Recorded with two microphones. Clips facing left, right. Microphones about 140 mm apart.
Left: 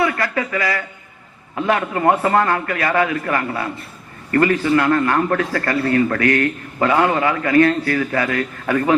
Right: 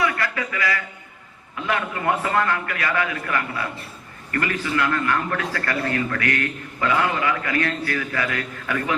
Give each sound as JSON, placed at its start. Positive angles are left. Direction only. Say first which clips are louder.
{"t": 0.0, "sound": "a man's voice", "louder": "left 5 dB", "side_deg": 35}